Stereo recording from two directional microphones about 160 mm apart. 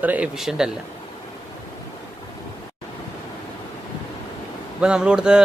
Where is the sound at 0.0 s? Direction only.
10° right (ahead or behind).